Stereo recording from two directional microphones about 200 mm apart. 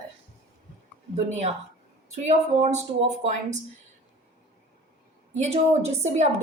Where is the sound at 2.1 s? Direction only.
35° right (ahead or behind).